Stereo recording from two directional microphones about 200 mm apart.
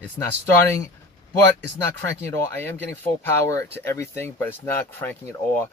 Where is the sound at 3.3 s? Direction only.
15° left (ahead or behind).